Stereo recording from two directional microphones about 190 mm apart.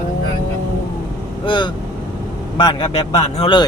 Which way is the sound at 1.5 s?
25° left (ahead or behind).